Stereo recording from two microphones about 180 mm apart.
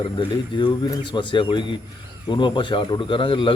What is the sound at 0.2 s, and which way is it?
Speech, 25° left (ahead or behind).